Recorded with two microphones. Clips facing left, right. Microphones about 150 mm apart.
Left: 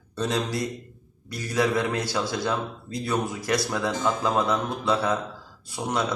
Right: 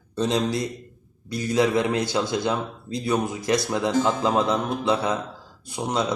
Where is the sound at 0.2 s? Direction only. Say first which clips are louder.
Right 3 dB; 20° right (ahead or behind).